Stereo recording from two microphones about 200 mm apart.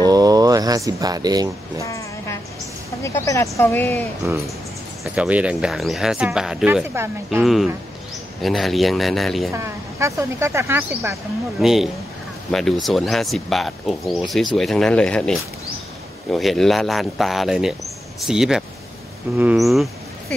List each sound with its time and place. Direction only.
0.0 s speech: 20° right (ahead or behind)
1.9 s a sound: 15° left (ahead or behind)
3.0 s speech: 15° left (ahead or behind)
5.0 s speech: 5° right (ahead or behind)
7.2 s speech: centre (ahead or behind)
9.5 s speech: 15° right (ahead or behind)
11.6 s speech: centre (ahead or behind)